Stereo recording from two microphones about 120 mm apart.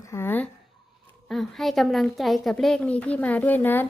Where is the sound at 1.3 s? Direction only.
Centre (ahead or behind).